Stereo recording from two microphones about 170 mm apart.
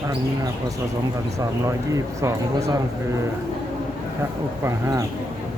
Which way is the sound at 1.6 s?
20° right (ahead or behind).